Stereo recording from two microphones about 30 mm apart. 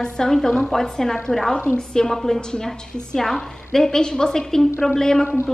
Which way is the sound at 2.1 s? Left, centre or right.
Centre.